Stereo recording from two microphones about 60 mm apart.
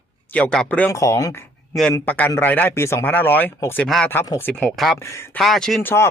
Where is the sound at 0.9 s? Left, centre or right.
Left.